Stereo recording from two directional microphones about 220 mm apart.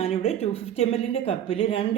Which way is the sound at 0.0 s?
25° left (ahead or behind).